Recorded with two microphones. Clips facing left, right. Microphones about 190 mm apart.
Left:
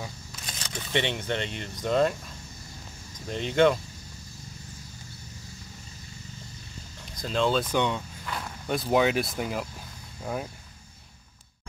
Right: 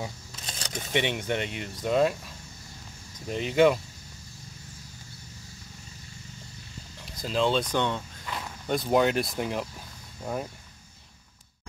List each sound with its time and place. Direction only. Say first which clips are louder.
0.6 s a sound: right 2 dB; 40° right (ahead or behind)
0.9 s speech: right 1 dB; 10° right (ahead or behind)
3.3 s speech: right 1 dB; 5° right (ahead or behind)
7.2 s speech: even; 5° right (ahead or behind)
7.7 s speech: left 1 dB; 10° left (ahead or behind)
8.3 s speech: right 1 dB; centre (ahead or behind)